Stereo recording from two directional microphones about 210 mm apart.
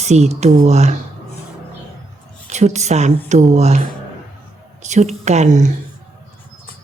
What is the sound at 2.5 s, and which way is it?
A woman's voice, 35° right (ahead or behind).